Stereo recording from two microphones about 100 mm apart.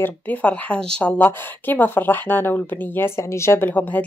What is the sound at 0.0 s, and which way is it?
Speech, 15° left (ahead or behind).